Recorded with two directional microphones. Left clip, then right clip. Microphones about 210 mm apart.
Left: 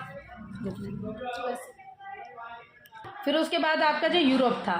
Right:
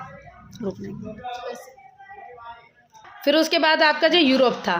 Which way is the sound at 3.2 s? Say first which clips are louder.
Right 7 dB; 50° right (ahead or behind).